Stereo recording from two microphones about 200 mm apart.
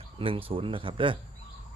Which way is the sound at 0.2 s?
25° right (ahead or behind).